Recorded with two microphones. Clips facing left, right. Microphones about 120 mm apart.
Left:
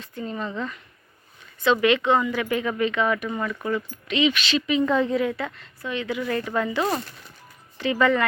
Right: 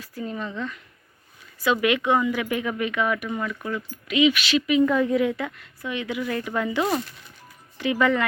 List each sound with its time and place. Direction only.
0.0 s speech: 5° right (ahead or behind)
1.6 s speech: 10° right (ahead or behind)
3.3 s speech: centre (ahead or behind)
4.1 s speech: 10° right (ahead or behind)
4.9 s a woman's voice: 25° left (ahead or behind)
5.1 s speech: 15° right (ahead or behind)